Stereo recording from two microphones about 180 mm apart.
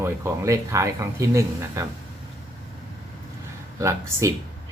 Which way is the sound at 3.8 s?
15° right (ahead or behind).